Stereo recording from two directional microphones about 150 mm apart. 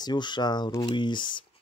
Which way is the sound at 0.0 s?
30° left (ahead or behind).